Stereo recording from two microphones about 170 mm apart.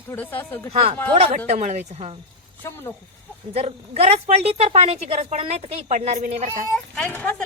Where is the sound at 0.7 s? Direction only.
40° right (ahead or behind).